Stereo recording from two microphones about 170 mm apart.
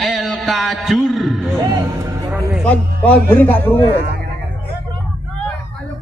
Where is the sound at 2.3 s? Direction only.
5° right (ahead or behind).